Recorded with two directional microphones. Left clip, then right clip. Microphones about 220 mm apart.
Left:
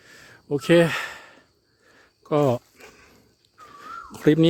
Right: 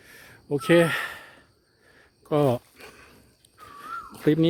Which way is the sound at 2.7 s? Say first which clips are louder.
Right 1 dB; centre (ahead or behind).